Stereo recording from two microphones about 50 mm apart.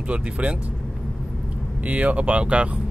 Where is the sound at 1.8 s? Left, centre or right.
Right.